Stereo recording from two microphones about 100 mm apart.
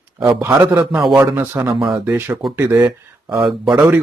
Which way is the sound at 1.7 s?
30° right (ahead or behind).